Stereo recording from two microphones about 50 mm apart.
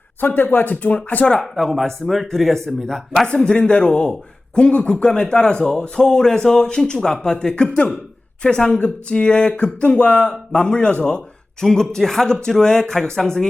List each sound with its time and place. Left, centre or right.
0.2 s speech: left
1.4 s a man's voice: centre
3.2 s a man's voice: centre
8.8 s a sound: left
10.5 s a man's voice: centre